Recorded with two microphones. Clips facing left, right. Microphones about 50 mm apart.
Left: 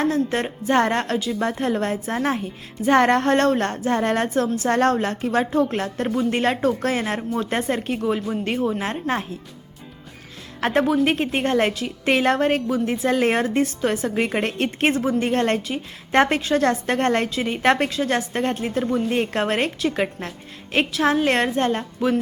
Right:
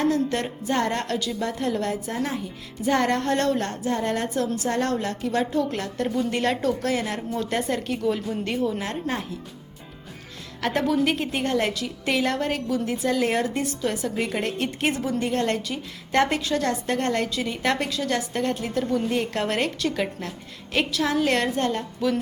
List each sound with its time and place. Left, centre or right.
0.0 s music: left
0.7 s speech: left
7.9 s music: left
8.8 s speech: left
10.8 s speech: left